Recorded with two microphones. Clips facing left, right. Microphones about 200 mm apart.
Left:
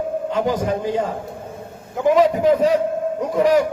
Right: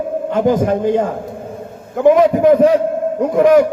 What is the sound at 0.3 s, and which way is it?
A man's voice, 50° right (ahead or behind).